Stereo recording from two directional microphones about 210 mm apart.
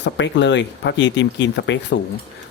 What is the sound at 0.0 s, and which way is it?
Speech, 60° left (ahead or behind).